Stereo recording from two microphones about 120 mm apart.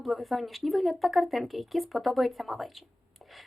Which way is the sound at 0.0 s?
Centre (ahead or behind).